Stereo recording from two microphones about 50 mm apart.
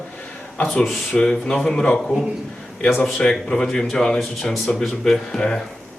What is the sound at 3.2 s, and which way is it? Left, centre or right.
Speech, centre.